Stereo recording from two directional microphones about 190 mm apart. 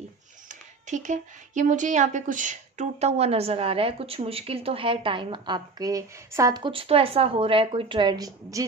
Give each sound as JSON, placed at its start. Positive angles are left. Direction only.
{"t": 0.5, "sound": "a woman's voice", "side_deg": -40}